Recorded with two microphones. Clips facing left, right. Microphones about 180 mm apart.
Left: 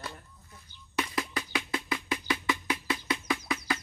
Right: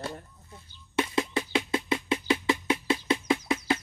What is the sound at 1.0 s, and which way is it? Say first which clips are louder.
Music: right 5 dB; 25° right (ahead or behind).